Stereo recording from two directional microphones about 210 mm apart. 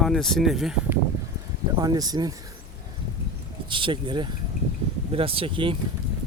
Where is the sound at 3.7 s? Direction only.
25° right (ahead or behind).